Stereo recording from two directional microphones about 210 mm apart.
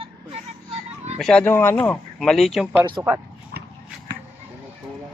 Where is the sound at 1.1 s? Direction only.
5° left (ahead or behind).